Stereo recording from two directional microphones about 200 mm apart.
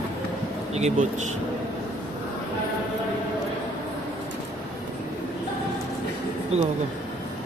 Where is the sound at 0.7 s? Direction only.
35° right (ahead or behind).